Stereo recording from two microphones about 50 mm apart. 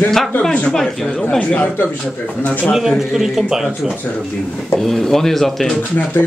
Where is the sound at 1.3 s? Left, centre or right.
Left.